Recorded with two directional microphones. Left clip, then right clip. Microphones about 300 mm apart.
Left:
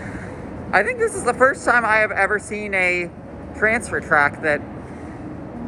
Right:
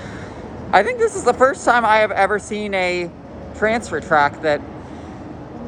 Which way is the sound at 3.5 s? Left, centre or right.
Centre.